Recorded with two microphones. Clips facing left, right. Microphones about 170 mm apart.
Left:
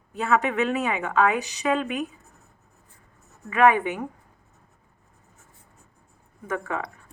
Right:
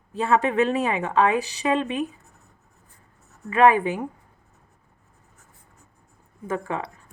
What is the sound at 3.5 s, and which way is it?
Speech, 30° right (ahead or behind).